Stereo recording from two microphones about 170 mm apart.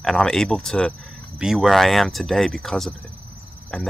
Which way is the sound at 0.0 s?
5° left (ahead or behind).